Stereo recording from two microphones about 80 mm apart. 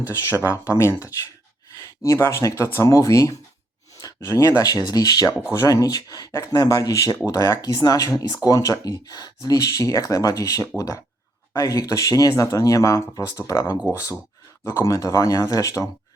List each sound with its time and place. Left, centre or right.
0.4 s speech: left
5.5 s speech: left